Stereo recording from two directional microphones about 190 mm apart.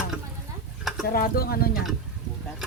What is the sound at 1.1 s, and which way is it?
Speech, 50° left (ahead or behind).